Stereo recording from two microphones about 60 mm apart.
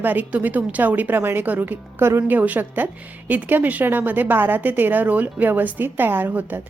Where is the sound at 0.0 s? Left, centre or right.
Right.